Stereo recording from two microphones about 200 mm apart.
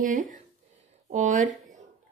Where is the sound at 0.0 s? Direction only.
40° right (ahead or behind).